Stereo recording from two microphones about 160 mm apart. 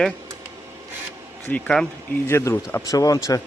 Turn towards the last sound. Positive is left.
turn(degrees=20)  # may be behind; listen again after turning